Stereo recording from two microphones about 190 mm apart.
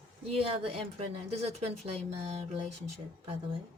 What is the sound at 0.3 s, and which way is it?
A woman's voice, 30° right (ahead or behind).